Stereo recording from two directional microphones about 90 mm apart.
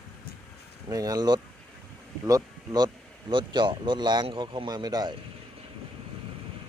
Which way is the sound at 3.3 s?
60° right (ahead or behind).